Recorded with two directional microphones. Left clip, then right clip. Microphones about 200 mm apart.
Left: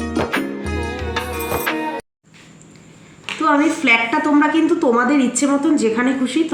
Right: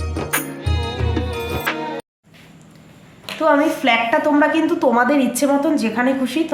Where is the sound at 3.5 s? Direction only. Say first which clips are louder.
Even; 30° right (ahead or behind).